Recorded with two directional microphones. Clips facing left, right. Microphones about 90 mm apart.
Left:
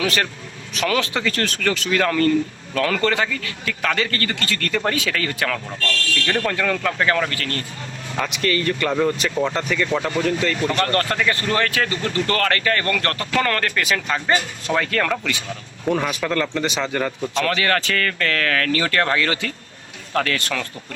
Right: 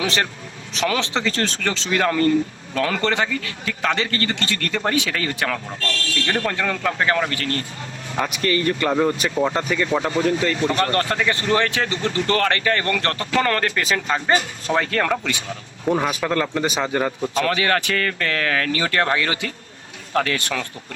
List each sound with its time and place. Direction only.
0.0 s speech: 25° right (ahead or behind)
8.9 s speech: 15° right (ahead or behind)
16.6 s speech: 5° right (ahead or behind)
16.9 s speech: 15° right (ahead or behind)